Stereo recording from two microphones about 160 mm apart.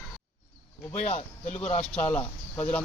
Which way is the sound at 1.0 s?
45° left (ahead or behind).